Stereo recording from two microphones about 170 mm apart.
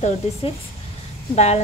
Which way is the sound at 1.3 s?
40° left (ahead or behind).